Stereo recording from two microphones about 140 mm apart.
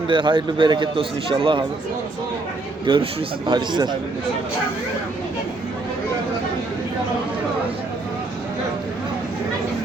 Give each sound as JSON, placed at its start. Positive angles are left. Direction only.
{"t": 0.1, "sound": "a man's voice", "side_deg": -35}
{"t": 2.8, "sound": "a man's voice", "side_deg": -35}